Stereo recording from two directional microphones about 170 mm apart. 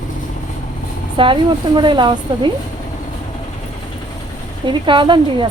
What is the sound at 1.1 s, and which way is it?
A woman's voice, 30° right (ahead or behind).